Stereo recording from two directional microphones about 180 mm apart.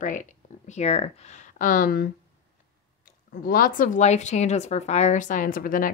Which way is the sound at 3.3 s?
55° left (ahead or behind).